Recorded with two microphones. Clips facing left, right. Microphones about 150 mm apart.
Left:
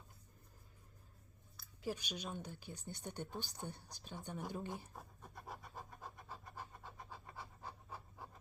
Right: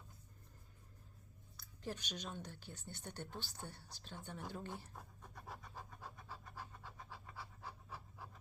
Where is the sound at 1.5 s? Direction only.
10° left (ahead or behind).